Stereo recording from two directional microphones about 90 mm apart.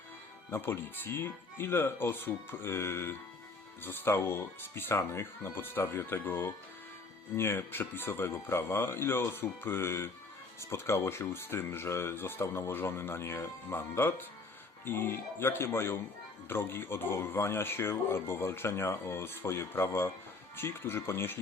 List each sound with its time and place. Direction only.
0.5 s speech: 25° left (ahead or behind)